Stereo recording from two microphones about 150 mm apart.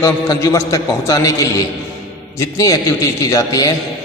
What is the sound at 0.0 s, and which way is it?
A man's voice, 20° left (ahead or behind).